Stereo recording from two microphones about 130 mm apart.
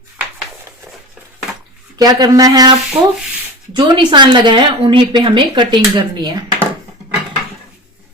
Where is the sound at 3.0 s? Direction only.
40° right (ahead or behind).